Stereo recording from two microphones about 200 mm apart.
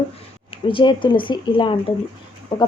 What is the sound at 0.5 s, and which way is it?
Speech, 25° left (ahead or behind).